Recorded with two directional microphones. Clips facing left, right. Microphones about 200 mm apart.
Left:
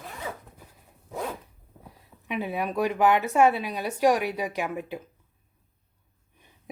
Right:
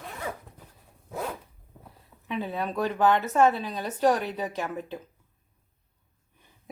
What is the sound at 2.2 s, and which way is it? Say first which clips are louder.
A woman's voice: left 1 dB; 15° left (ahead or behind).